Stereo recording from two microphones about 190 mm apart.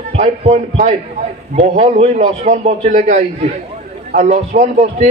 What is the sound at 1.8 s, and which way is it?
A man's voice, 35° right (ahead or behind).